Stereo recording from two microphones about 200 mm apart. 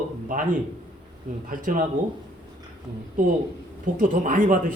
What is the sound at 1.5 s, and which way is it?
Speech, 45° right (ahead or behind).